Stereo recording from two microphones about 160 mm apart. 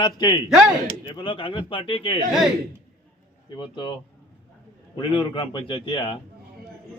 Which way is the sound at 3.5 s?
30° left (ahead or behind).